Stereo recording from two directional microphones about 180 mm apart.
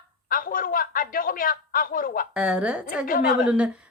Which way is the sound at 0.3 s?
50° left (ahead or behind).